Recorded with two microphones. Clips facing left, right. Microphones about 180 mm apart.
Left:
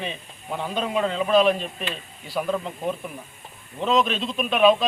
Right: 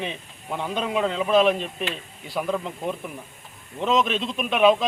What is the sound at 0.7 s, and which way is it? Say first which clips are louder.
Speech: even; 15° right (ahead or behind).